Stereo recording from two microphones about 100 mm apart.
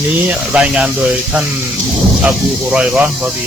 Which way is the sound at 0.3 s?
10° right (ahead or behind).